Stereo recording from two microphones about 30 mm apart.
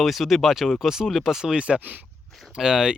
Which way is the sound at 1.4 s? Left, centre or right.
Right.